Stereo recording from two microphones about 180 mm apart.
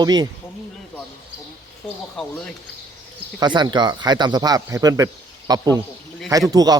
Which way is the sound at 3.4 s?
25° right (ahead or behind).